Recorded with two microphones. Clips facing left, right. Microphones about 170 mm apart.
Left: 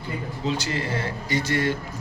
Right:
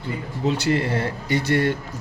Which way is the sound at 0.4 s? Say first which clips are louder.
Right 6 dB; 60° right (ahead or behind).